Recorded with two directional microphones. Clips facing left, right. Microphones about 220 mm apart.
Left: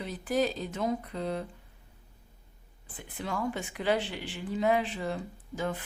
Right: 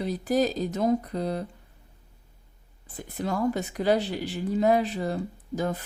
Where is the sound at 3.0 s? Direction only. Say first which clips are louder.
Right 6 dB; 40° right (ahead or behind).